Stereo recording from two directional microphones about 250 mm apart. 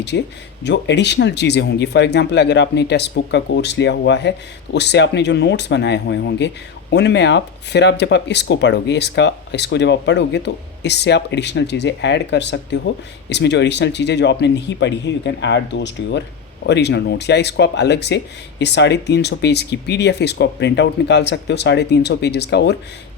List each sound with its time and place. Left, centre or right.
0.1 s speech: left